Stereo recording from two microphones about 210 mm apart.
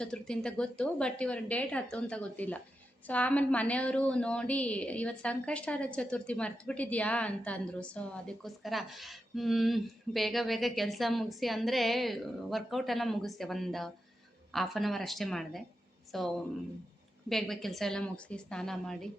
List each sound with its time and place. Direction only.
0.0 s a woman's voice: 5° left (ahead or behind)